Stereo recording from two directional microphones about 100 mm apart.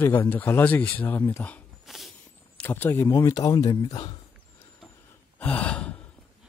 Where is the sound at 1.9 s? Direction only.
Centre (ahead or behind).